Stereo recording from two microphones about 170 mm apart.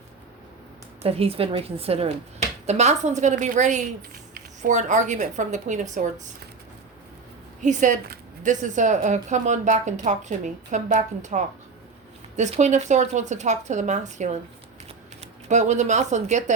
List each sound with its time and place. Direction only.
1.0 s a woman's voice: 35° right (ahead or behind)
7.6 s speech: 45° right (ahead or behind)